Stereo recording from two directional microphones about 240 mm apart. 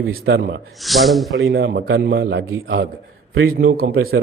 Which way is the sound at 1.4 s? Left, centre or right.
Right.